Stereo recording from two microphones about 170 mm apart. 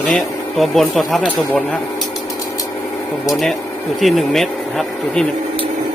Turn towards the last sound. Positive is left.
turn(degrees=0)  # may be behind; listen again after turning